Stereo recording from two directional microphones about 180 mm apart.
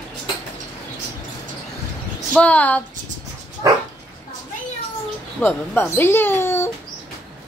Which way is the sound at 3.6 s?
20° right (ahead or behind).